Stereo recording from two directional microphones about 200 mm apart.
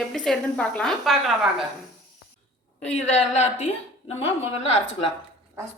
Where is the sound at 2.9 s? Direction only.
35° left (ahead or behind).